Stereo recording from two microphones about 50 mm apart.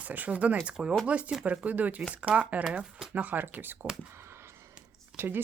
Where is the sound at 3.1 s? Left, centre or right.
Right.